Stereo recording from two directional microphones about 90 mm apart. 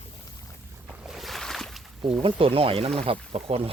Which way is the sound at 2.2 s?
85° right.